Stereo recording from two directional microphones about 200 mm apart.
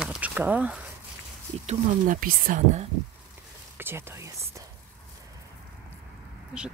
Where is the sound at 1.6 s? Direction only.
35° right (ahead or behind).